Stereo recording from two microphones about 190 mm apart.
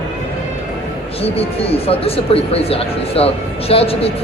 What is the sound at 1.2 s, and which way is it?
Speech, 30° left (ahead or behind).